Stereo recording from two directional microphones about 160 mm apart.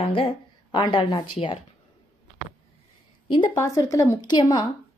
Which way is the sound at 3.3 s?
25° left (ahead or behind).